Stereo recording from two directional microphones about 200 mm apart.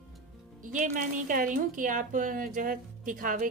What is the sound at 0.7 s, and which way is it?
A woman's voice, 40° right (ahead or behind).